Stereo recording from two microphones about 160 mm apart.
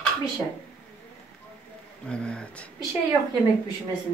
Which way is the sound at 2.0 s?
5° left (ahead or behind).